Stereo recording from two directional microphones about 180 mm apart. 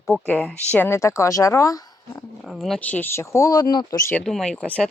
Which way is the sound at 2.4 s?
Centre (ahead or behind).